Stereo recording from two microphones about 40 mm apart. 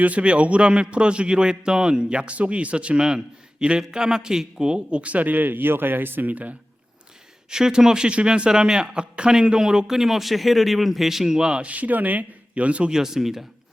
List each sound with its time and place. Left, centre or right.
0.0 s a man's voice: right
7.5 s a man's voice: centre
11.6 s a man's voice: right
12.9 s a man's voice: centre